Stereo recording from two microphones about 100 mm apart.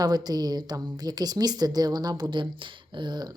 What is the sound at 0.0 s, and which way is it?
Speech, 40° right (ahead or behind).